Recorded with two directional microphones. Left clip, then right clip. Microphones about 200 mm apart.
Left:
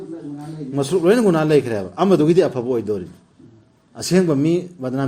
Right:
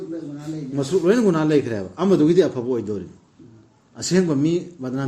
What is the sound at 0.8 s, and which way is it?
A man's voice, 40° left (ahead or behind).